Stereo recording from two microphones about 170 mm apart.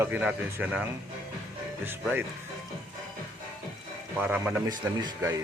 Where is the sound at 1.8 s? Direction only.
10° right (ahead or behind).